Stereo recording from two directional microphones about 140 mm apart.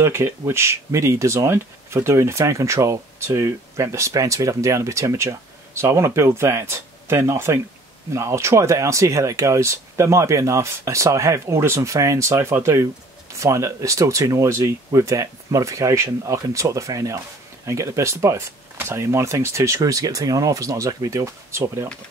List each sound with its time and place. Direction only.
0.0 s speech: 20° right (ahead or behind)